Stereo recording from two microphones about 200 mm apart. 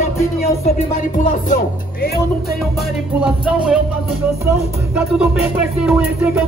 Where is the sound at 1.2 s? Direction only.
40° left (ahead or behind).